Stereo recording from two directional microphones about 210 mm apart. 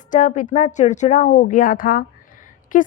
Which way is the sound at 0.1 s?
35° left (ahead or behind).